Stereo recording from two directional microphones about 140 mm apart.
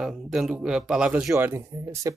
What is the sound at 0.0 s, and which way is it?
Speech, 5° right (ahead or behind).